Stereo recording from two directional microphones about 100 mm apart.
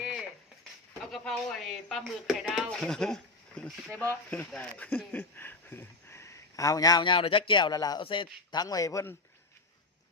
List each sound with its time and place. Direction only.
0.0 s a sound: 10° right (ahead or behind)
1.1 s speech: 5° left (ahead or behind); by 7.0 s 40° left (ahead or behind)
7.0 s speech: 55° left (ahead or behind); by 8.0 s 40° left (ahead or behind)
8.0 s a man's voice: 55° left (ahead or behind)
8.6 s speech: 35° left (ahead or behind)